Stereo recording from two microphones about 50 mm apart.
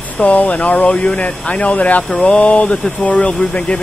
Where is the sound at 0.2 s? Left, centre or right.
Left.